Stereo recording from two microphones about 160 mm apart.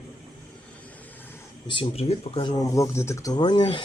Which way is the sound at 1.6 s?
30° left (ahead or behind).